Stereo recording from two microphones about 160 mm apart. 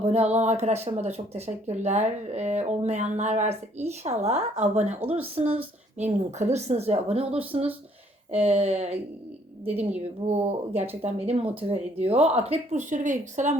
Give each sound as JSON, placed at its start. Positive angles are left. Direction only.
{"t": 0.0, "sound": "speech", "side_deg": -40}
{"t": 9.6, "sound": "a woman's voice", "side_deg": -10}
{"t": 10.2, "sound": "speech", "side_deg": -40}